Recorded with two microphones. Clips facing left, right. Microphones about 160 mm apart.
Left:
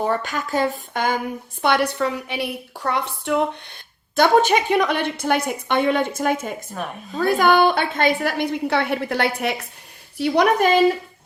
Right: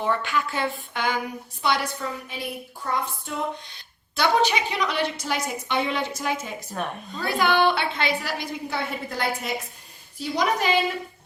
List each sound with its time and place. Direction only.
0.0 s a woman's voice: 40° left (ahead or behind); by 3.4 s 75° left (ahead or behind)
4.1 s a woman's voice: 50° left (ahead or behind)